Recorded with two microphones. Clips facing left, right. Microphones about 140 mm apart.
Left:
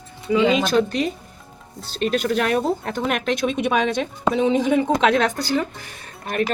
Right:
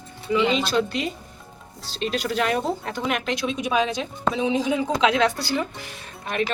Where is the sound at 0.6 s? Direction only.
45° left (ahead or behind).